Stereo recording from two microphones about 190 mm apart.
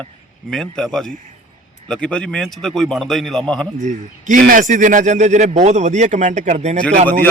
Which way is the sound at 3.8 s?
40° right (ahead or behind).